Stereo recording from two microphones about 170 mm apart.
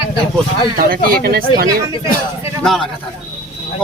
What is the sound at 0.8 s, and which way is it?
Speech, 60° right (ahead or behind).